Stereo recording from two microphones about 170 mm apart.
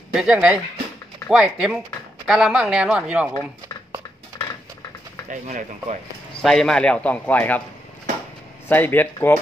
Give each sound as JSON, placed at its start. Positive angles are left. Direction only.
{"t": 0.1, "sound": "speech", "side_deg": -5}
{"t": 5.3, "sound": "speech", "side_deg": -45}
{"t": 6.4, "sound": "a man's voice", "side_deg": 5}
{"t": 8.6, "sound": "speech", "side_deg": 10}